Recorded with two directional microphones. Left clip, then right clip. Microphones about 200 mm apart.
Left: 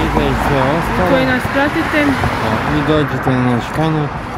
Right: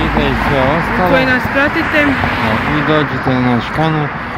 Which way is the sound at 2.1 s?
60° left (ahead or behind).